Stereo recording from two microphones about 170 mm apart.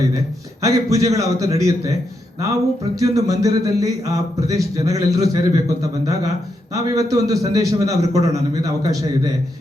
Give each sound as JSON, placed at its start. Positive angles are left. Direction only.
{"t": 0.6, "sound": "speech", "side_deg": -20}